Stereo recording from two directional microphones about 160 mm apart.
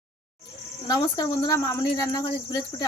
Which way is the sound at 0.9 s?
30° left (ahead or behind).